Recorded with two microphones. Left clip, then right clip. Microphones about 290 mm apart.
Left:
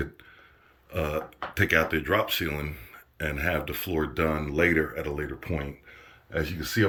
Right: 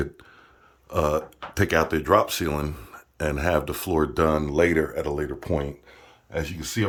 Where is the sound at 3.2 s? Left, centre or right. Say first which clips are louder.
Right 5 dB; centre.